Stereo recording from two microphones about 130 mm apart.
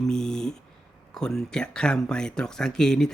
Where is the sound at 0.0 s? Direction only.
5° left (ahead or behind).